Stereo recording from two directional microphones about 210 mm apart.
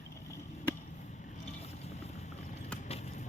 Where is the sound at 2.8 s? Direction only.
30° left (ahead or behind).